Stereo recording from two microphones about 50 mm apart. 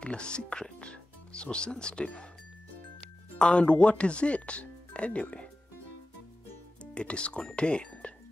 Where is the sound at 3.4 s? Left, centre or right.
Left.